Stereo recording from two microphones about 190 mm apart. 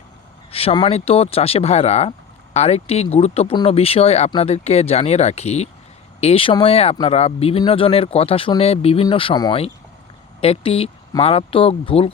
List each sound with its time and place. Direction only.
0.5 s speech: 30° left (ahead or behind)